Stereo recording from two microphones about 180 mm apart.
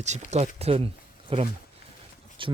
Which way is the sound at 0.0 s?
40° right (ahead or behind).